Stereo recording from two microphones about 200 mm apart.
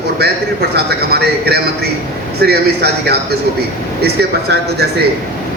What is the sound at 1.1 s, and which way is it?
A man's voice, 50° right (ahead or behind).